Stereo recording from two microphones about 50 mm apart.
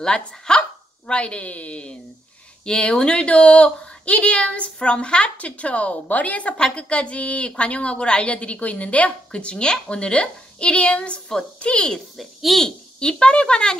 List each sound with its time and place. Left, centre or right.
0.0 s a woman's voice: centre
12.2 s a child's voice: centre
12.6 s a woman's voice: centre